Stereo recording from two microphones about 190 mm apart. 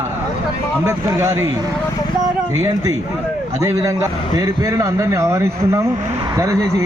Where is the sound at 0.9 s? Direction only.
15° right (ahead or behind).